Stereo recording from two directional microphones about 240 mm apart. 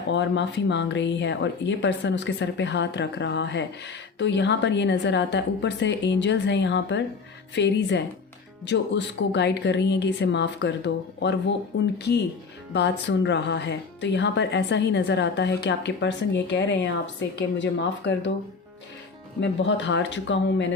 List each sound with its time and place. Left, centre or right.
0.1 s speech: left
12.7 s speech: left
19.4 s speech: left